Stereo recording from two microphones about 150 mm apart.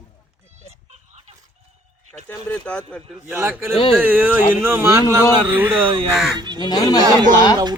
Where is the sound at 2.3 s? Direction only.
10° left (ahead or behind).